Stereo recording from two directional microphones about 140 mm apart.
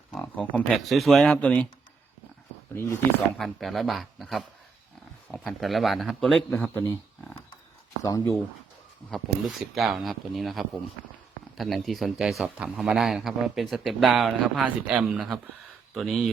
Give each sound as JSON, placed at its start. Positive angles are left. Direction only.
{"t": 0.1, "sound": "speech", "side_deg": 5}
{"t": 3.3, "sound": "a man's voice", "side_deg": 0}
{"t": 6.5, "sound": "speech", "side_deg": 15}
{"t": 8.0, "sound": "speech", "side_deg": 25}
{"t": 9.0, "sound": "a man's voice", "side_deg": 0}